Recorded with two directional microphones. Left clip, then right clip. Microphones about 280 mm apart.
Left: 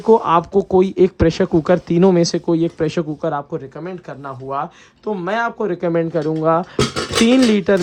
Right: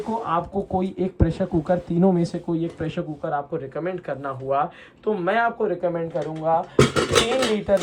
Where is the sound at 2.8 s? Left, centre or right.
Left.